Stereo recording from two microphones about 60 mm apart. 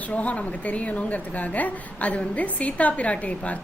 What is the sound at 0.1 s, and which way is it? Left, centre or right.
A woman's voice, left.